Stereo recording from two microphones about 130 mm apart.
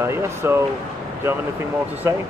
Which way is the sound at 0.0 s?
20° right (ahead or behind).